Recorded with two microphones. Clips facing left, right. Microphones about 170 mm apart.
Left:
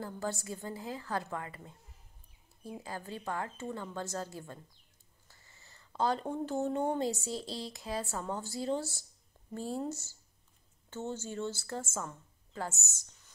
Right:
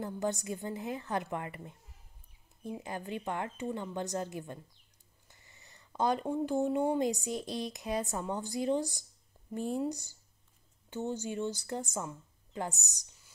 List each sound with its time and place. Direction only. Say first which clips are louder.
0.0 s a woman's voice: right 4 dB; 20° right (ahead or behind)
2.8 s a woman's voice: right 2 dB; 20° right (ahead or behind)